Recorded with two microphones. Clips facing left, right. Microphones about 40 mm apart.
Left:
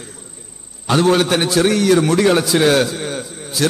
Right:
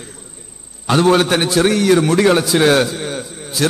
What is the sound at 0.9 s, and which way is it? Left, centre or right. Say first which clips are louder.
A man's voice: right 1 dB; centre.